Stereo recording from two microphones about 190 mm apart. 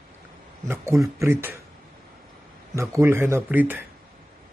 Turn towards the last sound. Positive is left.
turn(degrees=-10)  # may be behind; listen again after turning